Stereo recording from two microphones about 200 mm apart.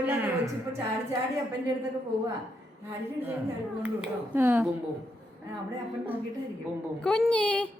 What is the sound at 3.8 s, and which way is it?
Speech, 10° right (ahead or behind).